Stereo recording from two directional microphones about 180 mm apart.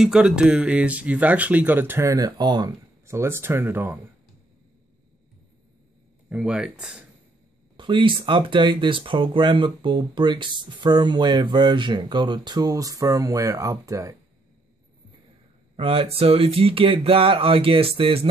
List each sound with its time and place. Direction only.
0.0 s speech: 5° right (ahead or behind)
6.2 s speech: 5° right (ahead or behind)
7.7 s speech: 25° right (ahead or behind)
15.7 s speech: 30° right (ahead or behind)